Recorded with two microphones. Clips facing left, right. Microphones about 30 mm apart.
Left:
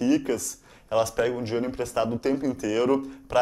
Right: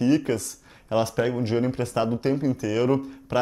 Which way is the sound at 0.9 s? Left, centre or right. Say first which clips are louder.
Even; right.